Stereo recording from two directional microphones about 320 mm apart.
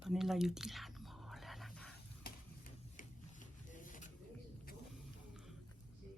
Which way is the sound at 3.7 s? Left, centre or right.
Left.